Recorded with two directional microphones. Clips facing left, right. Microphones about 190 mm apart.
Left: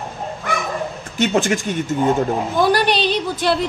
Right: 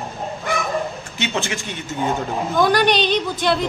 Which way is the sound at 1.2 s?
45° left (ahead or behind).